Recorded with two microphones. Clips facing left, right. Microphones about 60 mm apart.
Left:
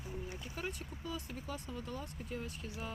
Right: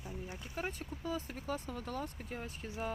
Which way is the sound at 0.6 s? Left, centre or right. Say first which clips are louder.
Right 4 dB; right.